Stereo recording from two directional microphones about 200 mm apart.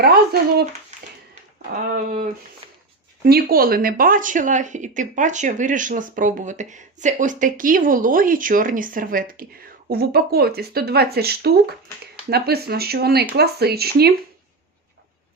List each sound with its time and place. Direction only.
0.0 s speech: 50° right (ahead or behind)
1.7 s speech: 45° right (ahead or behind)
3.2 s speech: 50° right (ahead or behind)